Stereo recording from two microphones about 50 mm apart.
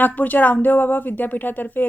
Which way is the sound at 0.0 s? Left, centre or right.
Left.